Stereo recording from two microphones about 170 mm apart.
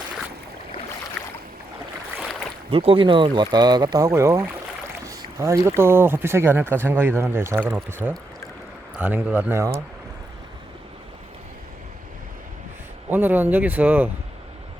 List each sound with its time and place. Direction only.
1.2 s boat: 5° left (ahead or behind)
2.6 s speech: 35° right (ahead or behind); by 9.7 s 15° right (ahead or behind)
13.1 s speech: 10° right (ahead or behind)